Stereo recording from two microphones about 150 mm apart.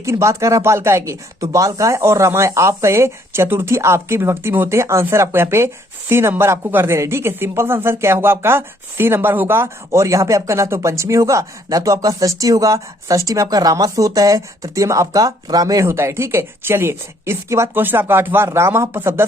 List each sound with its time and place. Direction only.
0.0 s speech: 20° right (ahead or behind)